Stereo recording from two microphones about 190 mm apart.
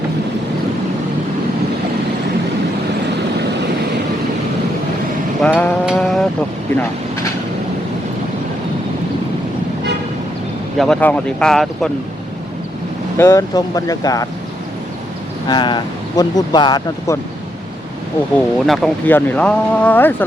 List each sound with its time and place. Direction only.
5.4 s mantra: 5° left (ahead or behind)
5.8 s vehicle: centre (ahead or behind)
10.8 s speech: 5° left (ahead or behind)
13.1 s speech: 15° left (ahead or behind)
15.4 s speech: 25° left (ahead or behind)
18.3 s speech: centre (ahead or behind)